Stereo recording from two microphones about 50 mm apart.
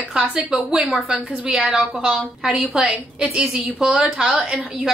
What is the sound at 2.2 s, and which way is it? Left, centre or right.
Speech, right.